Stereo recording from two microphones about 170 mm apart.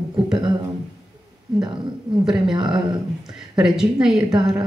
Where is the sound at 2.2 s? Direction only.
5° right (ahead or behind).